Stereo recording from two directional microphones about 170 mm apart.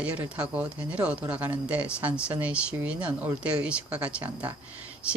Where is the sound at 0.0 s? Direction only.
5° right (ahead or behind).